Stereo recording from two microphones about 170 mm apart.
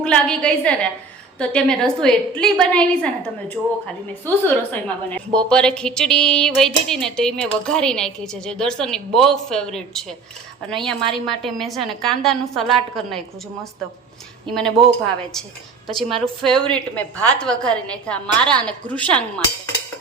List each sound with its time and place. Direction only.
0.0 s a woman's voice: 5° left (ahead or behind)
3.6 s speech: 10° right (ahead or behind)
4.4 s a woman's voice: 10° left (ahead or behind)
14.5 s a woman's voice: 5° left (ahead or behind)
16.0 s a woman's voice: 30° right (ahead or behind)
16.7 s a woman's voice: 5° left (ahead or behind)